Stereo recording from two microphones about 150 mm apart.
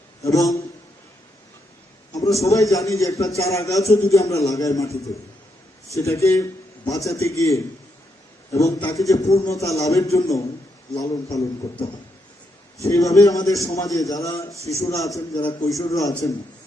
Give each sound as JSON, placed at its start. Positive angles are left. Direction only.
{"t": 0.2, "sound": "a man's voice", "side_deg": 20}
{"t": 2.1, "sound": "a man's voice", "side_deg": 20}
{"t": 5.9, "sound": "a man's voice", "side_deg": 20}
{"t": 8.9, "sound": "a man's voice", "side_deg": 20}
{"t": 12.9, "sound": "a man's voice", "side_deg": 20}